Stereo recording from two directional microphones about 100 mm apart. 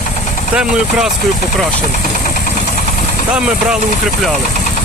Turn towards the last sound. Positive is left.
turn(degrees=-5)  # may be behind; listen again after turning